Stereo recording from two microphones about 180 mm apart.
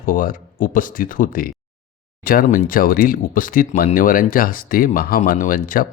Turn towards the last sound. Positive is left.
turn(degrees=50)  # may be behind; listen again after turning